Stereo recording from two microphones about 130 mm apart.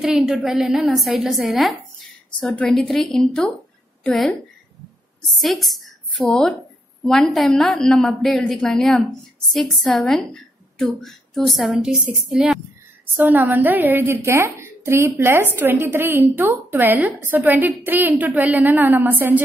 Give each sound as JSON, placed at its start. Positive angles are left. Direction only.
{"t": 0.0, "sound": "a woman's voice", "side_deg": -5}
{"t": 13.1, "sound": "a woman's voice", "side_deg": -15}